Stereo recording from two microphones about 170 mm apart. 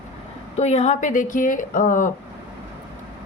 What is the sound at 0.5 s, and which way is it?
A woman's voice, 40° left (ahead or behind).